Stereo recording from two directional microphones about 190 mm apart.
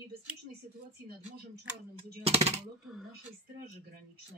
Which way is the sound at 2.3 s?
35° right (ahead or behind).